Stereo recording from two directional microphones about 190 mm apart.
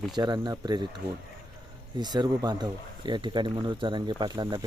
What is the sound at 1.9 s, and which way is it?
Speech, 20° right (ahead or behind).